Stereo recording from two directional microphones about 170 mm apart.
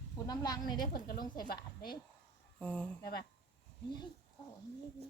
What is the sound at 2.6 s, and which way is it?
Speech, 10° left (ahead or behind).